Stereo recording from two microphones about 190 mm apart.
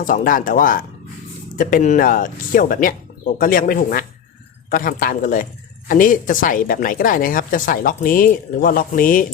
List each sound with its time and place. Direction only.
0.0 s a woman's voice: 45° left (ahead or behind)